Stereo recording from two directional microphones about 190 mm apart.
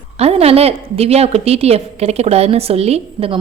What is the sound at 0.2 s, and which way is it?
A woman's voice, 35° right (ahead or behind).